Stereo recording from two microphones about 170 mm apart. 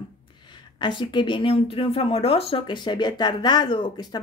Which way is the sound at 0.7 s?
25° left (ahead or behind).